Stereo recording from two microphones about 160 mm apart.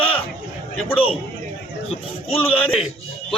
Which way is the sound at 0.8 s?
35° left (ahead or behind).